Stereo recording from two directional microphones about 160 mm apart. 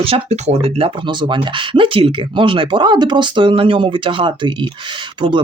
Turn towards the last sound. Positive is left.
turn(degrees=-30)  # may be behind; listen again after turning